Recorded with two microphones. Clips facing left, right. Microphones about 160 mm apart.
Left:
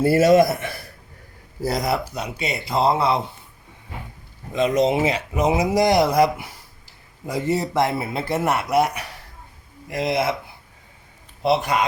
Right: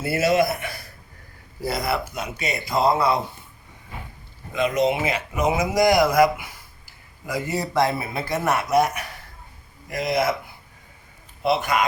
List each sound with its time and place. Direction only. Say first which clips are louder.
0.0 s a man's voice: left 6 dB; 45° left (ahead or behind)
1.6 s speech: left 2 dB; 40° left (ahead or behind)
4.5 s speech: left 2 dB; 35° left (ahead or behind)
11.4 s speech: left 1 dB; 30° left (ahead or behind)